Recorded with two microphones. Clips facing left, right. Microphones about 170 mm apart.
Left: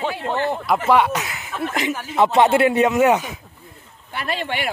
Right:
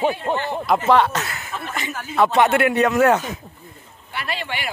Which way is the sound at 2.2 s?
25° left (ahead or behind).